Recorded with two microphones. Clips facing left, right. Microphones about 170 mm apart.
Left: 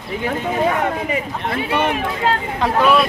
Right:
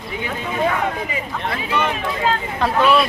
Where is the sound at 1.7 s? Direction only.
60° left (ahead or behind).